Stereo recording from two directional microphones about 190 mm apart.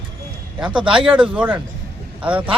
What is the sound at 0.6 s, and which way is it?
Speech, 5° right (ahead or behind).